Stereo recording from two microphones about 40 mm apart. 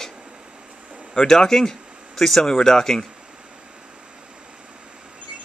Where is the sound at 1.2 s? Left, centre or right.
Centre.